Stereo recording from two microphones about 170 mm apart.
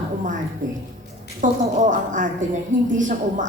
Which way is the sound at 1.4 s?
50° right (ahead or behind).